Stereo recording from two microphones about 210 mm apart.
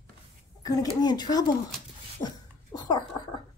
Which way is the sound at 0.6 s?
20° left (ahead or behind).